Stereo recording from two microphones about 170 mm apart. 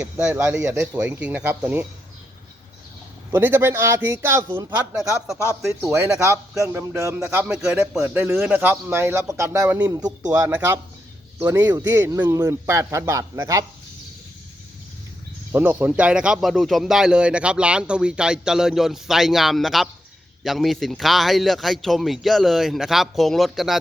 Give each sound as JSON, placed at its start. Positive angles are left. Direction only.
{"t": 0.0, "sound": "a man's voice", "side_deg": -5}
{"t": 3.3, "sound": "a man's voice", "side_deg": -10}
{"t": 11.6, "sound": "a man's voice", "side_deg": -20}
{"t": 15.5, "sound": "speech", "side_deg": -10}